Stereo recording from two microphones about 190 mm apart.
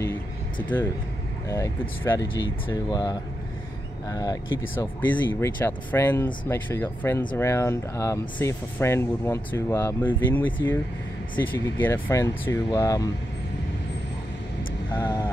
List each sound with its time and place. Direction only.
1.5 s speech: 15° left (ahead or behind)
15.0 s speech: 15° left (ahead or behind)